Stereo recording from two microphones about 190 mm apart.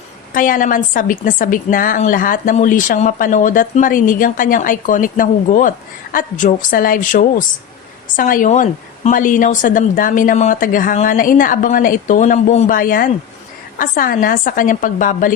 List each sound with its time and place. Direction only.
0.3 s a woman's voice: 45° left (ahead or behind)